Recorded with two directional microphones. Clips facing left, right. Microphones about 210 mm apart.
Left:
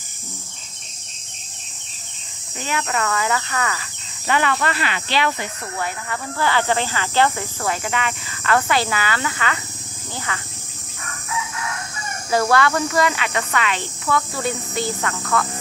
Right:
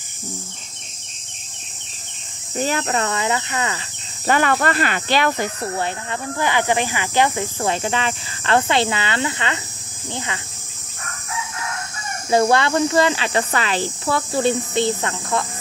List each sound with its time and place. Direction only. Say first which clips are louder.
2.5 s speech: right 4 dB; 40° right (ahead or behind); by 3.8 s 25° right (ahead or behind)
4.3 s speech: right 3 dB; 45° right (ahead or behind)
5.8 s speech: right 2 dB; 20° right (ahead or behind)
12.3 s speech: right 2 dB; 25° right (ahead or behind)